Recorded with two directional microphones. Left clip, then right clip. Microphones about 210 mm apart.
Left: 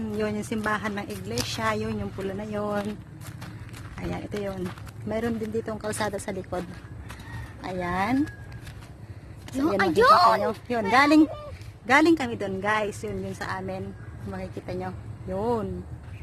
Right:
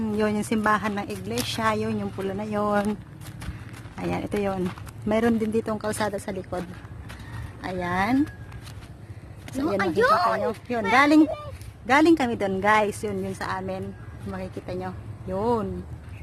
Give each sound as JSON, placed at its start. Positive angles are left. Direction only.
{"t": 0.0, "sound": "a woman's voice", "side_deg": -20}
{"t": 4.1, "sound": "speech", "side_deg": -35}
{"t": 5.7, "sound": "a woman's voice", "side_deg": -15}
{"t": 6.1, "sound": "speech", "side_deg": 0}
{"t": 9.6, "sound": "speech", "side_deg": 45}
{"t": 10.4, "sound": "a woman's voice", "side_deg": 10}